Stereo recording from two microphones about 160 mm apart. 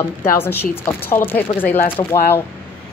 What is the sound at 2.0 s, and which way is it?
Speech, 25° left (ahead or behind).